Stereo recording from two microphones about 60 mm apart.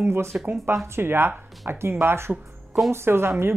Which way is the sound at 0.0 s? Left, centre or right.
Right.